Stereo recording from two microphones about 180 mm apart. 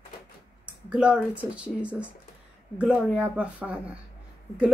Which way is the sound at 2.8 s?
5° right (ahead or behind).